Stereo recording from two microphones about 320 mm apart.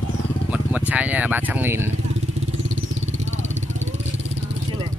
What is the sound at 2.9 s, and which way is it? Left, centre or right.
Vehicle, right.